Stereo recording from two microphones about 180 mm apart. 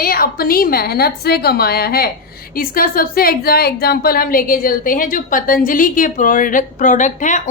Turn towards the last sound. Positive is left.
turn(degrees=45)  # may be behind; listen again after turning